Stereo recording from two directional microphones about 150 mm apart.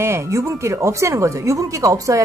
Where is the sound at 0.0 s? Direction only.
20° right (ahead or behind).